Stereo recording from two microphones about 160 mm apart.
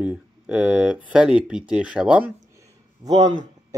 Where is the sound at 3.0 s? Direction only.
25° right (ahead or behind).